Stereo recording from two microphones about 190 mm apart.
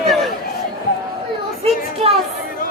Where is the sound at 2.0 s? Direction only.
30° right (ahead or behind).